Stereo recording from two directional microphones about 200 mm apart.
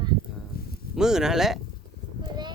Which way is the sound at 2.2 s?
20° right (ahead or behind).